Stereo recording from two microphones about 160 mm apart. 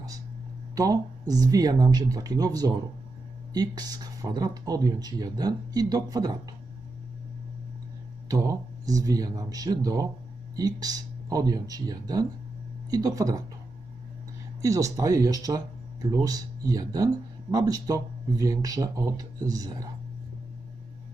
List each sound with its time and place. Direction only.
0.8 s speech: 20° right (ahead or behind)
8.3 s speech: 20° right (ahead or behind)
14.6 s speech: 20° right (ahead or behind)